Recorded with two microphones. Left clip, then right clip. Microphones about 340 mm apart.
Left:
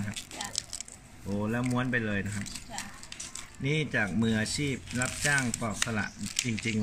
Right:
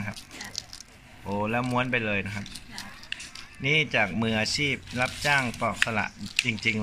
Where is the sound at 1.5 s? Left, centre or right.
Centre.